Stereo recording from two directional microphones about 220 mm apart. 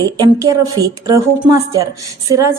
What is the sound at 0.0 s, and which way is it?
A woman's voice, 15° right (ahead or behind).